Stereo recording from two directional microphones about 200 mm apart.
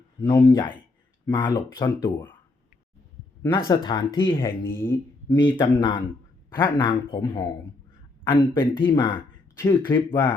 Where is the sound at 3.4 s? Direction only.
20° left (ahead or behind).